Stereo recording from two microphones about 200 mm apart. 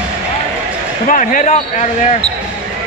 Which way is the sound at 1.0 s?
40° left (ahead or behind).